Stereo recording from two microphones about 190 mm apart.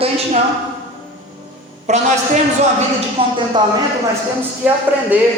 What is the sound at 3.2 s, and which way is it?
Speech, 30° right (ahead or behind).